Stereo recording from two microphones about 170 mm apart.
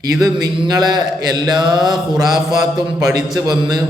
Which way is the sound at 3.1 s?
25° right (ahead or behind).